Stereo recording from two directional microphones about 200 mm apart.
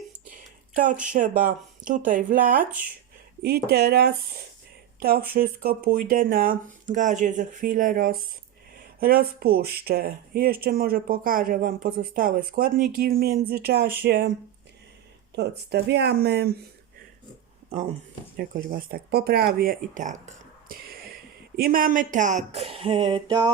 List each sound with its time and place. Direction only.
1.0 s speech: 40° right (ahead or behind)
15.4 s speech: 55° right (ahead or behind)
17.7 s speech: 35° right (ahead or behind)
18.7 s speech: 50° right (ahead or behind); by 23.5 s 20° right (ahead or behind)